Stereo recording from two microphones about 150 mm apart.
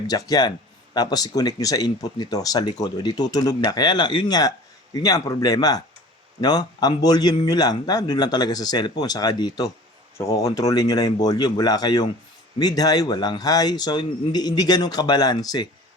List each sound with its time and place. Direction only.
0.1 s speech: 25° left (ahead or behind)